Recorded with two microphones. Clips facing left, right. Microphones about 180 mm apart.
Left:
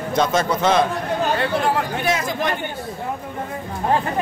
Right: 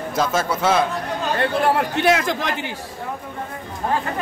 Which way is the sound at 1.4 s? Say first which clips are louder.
Right 1 dB; 65° right (ahead or behind).